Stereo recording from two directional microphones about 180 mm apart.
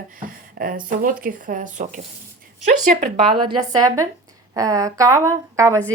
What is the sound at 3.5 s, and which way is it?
Speech, 20° right (ahead or behind).